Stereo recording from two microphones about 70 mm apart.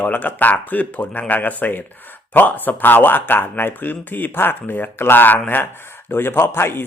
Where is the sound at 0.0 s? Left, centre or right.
Left.